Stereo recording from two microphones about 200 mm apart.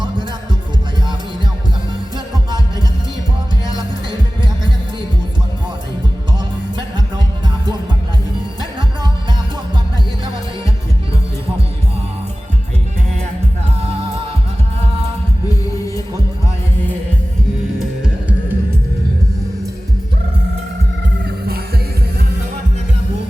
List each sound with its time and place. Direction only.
17.7 s music: 5° right (ahead or behind)
21.2 s music: 50° right (ahead or behind)